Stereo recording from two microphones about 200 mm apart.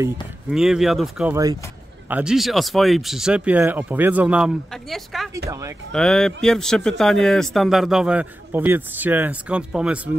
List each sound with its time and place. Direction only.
0.5 s speech: centre (ahead or behind)
1.3 s speech: 15° right (ahead or behind)
2.0 s speech: 5° right (ahead or behind)